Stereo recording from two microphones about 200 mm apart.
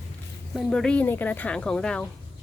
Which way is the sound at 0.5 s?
Centre (ahead or behind).